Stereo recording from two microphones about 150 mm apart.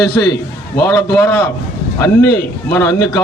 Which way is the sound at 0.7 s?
15° left (ahead or behind).